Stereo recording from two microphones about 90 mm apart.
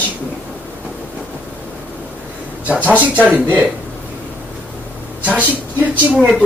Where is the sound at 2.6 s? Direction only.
15° right (ahead or behind).